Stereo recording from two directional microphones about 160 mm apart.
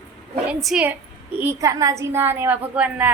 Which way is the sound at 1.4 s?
15° right (ahead or behind).